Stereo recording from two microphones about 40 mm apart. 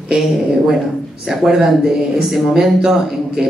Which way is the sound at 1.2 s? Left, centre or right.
Centre.